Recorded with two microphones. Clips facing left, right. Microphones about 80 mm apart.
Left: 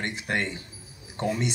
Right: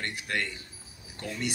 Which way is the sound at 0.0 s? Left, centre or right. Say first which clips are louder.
Left 4 dB; left.